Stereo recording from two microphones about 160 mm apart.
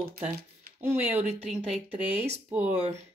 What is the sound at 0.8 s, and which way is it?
Speech, 10° right (ahead or behind).